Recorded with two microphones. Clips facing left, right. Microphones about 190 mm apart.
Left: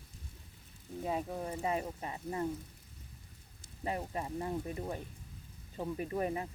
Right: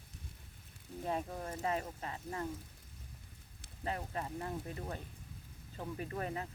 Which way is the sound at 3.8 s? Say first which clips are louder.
Left 3 dB; 15° left (ahead or behind).